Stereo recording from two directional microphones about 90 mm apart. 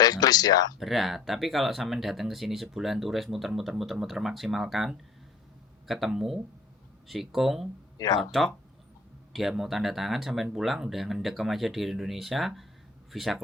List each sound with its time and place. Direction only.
0.0 s speech: 45° left (ahead or behind)
0.8 s speech: centre (ahead or behind)
7.9 s speech: 40° left (ahead or behind)
8.2 s speech: centre (ahead or behind)